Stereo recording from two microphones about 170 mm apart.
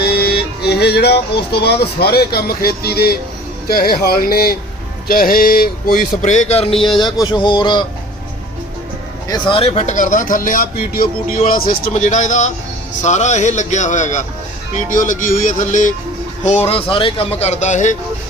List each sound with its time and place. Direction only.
0.0 s speech: 70° left (ahead or behind); by 6.7 s 35° left (ahead or behind)
7.0 s speech: 25° left (ahead or behind)
9.3 s speech: 30° left (ahead or behind); by 15.9 s 50° left (ahead or behind)
16.6 s speech: 30° left (ahead or behind)